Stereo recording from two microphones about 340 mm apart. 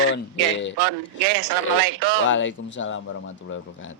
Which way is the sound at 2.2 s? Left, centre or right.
Left.